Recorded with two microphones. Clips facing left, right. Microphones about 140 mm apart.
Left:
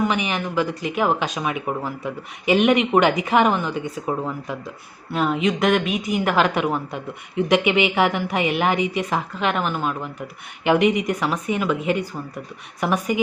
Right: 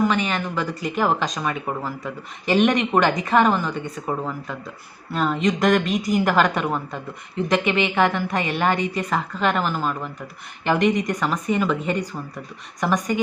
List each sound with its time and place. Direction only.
0.0 s speech: 10° left (ahead or behind)